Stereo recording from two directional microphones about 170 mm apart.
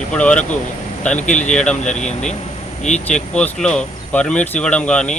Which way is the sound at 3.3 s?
5° left (ahead or behind).